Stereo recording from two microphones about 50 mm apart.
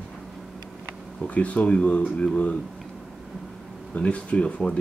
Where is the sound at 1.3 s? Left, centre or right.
Left.